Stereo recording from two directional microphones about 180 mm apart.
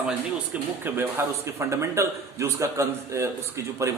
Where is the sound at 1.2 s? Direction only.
15° right (ahead or behind).